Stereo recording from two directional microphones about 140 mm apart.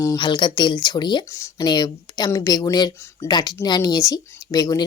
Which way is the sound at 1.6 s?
30° left (ahead or behind).